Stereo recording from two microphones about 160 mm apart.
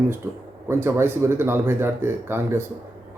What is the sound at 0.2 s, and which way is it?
Speech, 15° right (ahead or behind).